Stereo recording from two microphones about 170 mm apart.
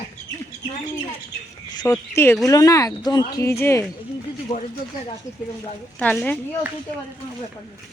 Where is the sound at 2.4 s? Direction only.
20° left (ahead or behind).